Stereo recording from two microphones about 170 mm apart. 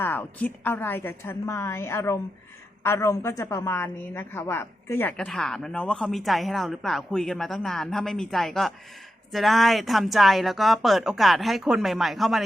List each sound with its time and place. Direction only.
0.0 s a woman's voice: 10° left (ahead or behind)